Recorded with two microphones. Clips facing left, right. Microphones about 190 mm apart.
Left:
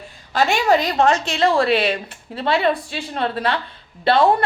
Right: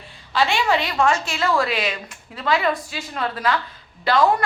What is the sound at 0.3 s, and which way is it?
A woman's voice, 45° left (ahead or behind).